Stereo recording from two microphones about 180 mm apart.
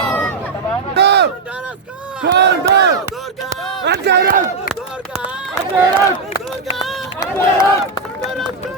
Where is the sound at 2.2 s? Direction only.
70° right (ahead or behind).